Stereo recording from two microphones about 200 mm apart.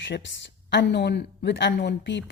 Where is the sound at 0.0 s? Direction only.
65° left (ahead or behind).